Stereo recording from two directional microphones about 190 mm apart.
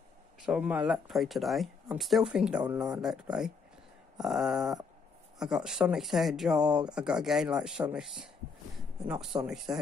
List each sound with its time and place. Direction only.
0.5 s speech: 5° right (ahead or behind)
9.3 s speech: 20° right (ahead or behind)